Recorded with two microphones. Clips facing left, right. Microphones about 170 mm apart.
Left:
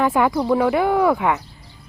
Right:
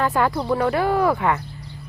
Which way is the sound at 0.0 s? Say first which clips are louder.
Left 3 dB; 15° left (ahead or behind).